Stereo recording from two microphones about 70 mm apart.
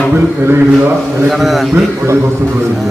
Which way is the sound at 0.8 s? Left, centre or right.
Right.